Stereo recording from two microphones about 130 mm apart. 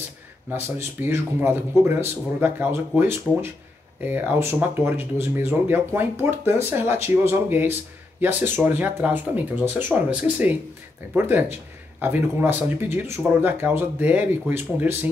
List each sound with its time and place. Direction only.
0.5 s speech: 15° right (ahead or behind)